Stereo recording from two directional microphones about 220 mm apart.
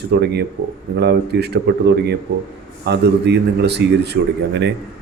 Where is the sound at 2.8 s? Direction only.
50° right (ahead or behind).